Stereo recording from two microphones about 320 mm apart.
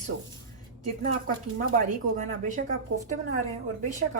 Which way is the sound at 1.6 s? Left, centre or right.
Right.